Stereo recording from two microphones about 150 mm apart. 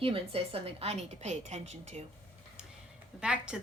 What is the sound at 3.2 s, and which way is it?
Speech, 5° right (ahead or behind).